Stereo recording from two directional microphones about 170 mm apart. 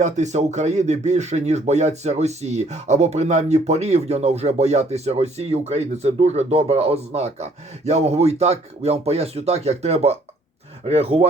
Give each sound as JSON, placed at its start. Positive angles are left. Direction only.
{"t": 0.0, "sound": "speech", "side_deg": -45}